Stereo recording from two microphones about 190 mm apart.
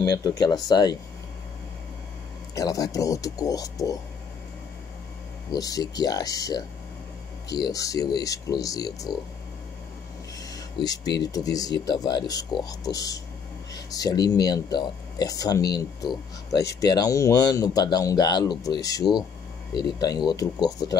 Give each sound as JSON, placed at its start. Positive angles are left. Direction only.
{"t": 0.0, "sound": "speech", "side_deg": 20}
{"t": 2.5, "sound": "speech", "side_deg": 20}
{"t": 5.5, "sound": "speech", "side_deg": 20}
{"t": 7.7, "sound": "speech", "side_deg": 20}
{"t": 10.5, "sound": "a sound", "side_deg": 20}
{"t": 11.3, "sound": "speech", "side_deg": 20}